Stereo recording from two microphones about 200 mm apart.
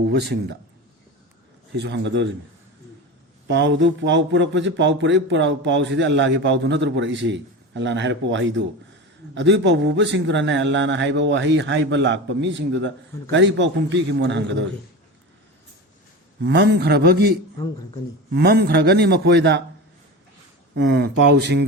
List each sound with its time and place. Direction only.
0.1 s speech: 55° right (ahead or behind)
1.7 s speech: 60° right (ahead or behind)
3.4 s speech: 60° right (ahead or behind)
16.4 s speech: 60° right (ahead or behind)
20.7 s speech: 55° right (ahead or behind)